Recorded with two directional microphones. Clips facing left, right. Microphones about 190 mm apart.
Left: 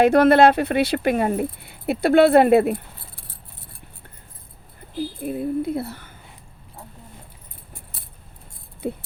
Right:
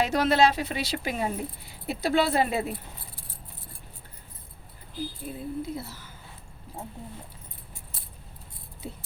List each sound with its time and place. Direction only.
0.0 s speech: 55° left (ahead or behind)
5.2 s speech: 60° left (ahead or behind)
8.8 s a sound: 60° left (ahead or behind)